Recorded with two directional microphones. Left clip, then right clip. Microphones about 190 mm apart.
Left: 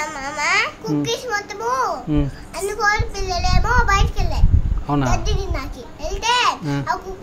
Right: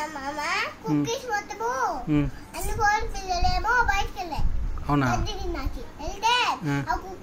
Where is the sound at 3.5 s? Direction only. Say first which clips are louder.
Left 5 dB; 25° left (ahead or behind).